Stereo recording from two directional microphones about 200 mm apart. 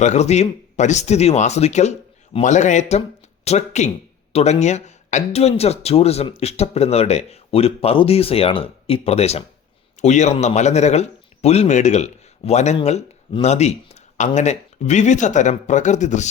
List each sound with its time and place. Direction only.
0.0 s a man's voice: 35° left (ahead or behind)